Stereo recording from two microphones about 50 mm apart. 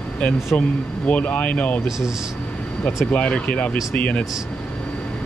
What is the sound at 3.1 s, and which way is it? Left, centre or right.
Speech, left.